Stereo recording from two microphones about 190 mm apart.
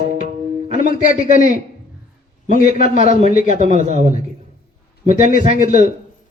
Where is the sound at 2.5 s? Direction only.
45° left (ahead or behind).